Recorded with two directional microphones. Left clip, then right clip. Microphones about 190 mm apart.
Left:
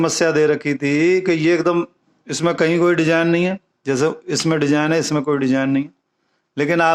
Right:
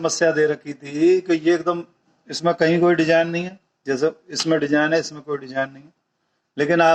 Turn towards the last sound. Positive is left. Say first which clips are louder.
# even
turn(degrees=45)  # may be behind; listen again after turning